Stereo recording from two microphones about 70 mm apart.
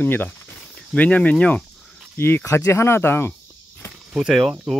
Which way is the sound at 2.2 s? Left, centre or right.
Left.